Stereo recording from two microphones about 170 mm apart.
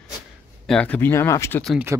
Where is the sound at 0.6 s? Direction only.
5° left (ahead or behind).